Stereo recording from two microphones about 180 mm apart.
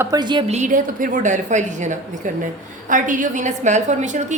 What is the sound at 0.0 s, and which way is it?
A woman's voice, 20° right (ahead or behind).